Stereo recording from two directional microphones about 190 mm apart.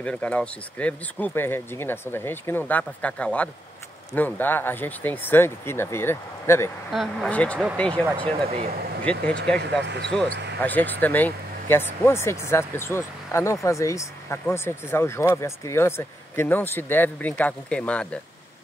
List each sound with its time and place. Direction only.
0.0 s speech: 5° left (ahead or behind)
6.9 s speech: centre (ahead or behind)
9.8 s speech: 65° right (ahead or behind)
10.6 s speech: 10° left (ahead or behind)